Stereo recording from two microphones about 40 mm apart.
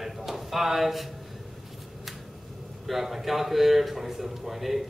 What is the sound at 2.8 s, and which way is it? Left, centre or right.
Speech, centre.